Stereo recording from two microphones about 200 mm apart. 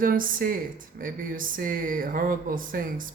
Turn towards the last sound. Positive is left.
turn(degrees=-45)  # may be behind; listen again after turning